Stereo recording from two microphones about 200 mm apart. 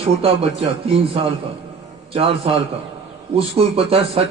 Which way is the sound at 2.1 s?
30° right (ahead or behind).